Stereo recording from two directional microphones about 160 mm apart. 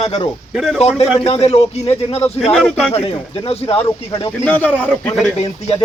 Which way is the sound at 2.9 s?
35° left (ahead or behind).